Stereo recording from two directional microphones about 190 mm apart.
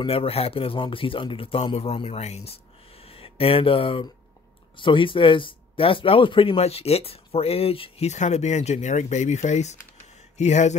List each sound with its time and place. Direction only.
0.0 s speech: 30° left (ahead or behind)